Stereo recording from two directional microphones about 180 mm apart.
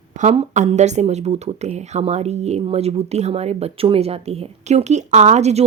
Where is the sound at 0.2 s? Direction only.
40° right (ahead or behind).